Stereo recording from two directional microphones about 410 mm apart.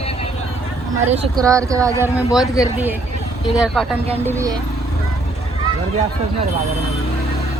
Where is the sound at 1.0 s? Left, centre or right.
Centre.